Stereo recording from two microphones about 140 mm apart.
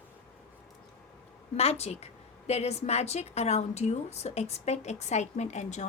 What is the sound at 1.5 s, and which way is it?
A woman's voice, 50° left (ahead or behind).